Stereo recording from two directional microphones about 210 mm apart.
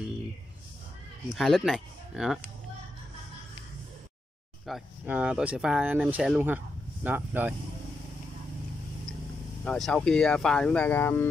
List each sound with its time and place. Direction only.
1.3 s speech: centre (ahead or behind)
4.6 s speech: 5° right (ahead or behind)
9.7 s speech: centre (ahead or behind)